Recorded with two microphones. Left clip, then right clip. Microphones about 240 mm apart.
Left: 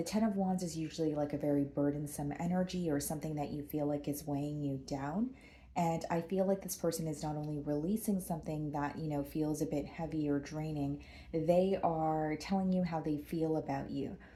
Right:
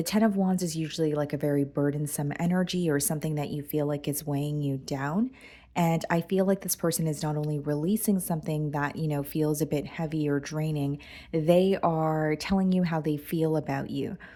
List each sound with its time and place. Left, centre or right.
0.0 s speech: right